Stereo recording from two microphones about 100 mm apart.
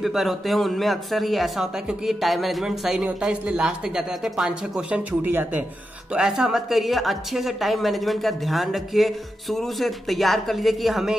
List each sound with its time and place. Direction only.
0.0 s a woman's voice: centre (ahead or behind)
5.2 s a woman's voice: 20° right (ahead or behind); by 11.1 s centre (ahead or behind)